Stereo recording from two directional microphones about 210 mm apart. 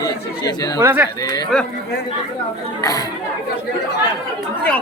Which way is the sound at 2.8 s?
15° left (ahead or behind).